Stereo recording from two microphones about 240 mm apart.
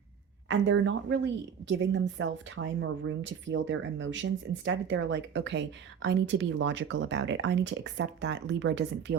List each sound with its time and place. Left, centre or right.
0.5 s a woman's voice: right